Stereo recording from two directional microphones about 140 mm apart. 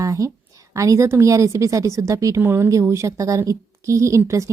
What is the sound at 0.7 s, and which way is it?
A woman's voice, 20° right (ahead or behind).